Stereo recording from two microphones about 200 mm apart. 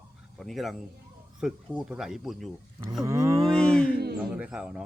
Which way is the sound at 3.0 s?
15° right (ahead or behind).